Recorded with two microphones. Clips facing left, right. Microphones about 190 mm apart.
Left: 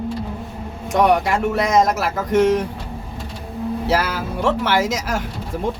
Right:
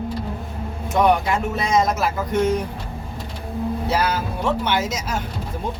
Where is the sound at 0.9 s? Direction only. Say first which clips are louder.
Left 2 dB; 90° left.